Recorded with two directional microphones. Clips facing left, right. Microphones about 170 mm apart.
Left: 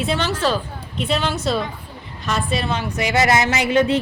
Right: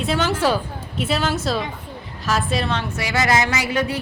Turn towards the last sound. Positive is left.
turn(degrees=25)  # may be behind; listen again after turning